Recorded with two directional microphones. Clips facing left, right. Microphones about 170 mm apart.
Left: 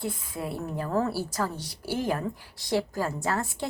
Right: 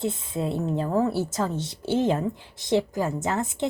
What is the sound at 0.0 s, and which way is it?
A woman's voice, 25° right (ahead or behind).